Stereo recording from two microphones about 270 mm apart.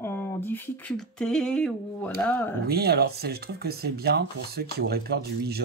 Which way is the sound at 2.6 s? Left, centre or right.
Right.